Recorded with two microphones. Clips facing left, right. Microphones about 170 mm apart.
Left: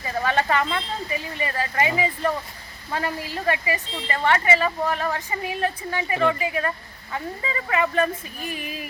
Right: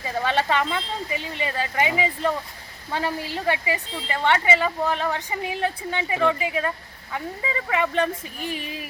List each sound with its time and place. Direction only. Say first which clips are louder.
0.5 s a woman's voice: even; 20° right (ahead or behind)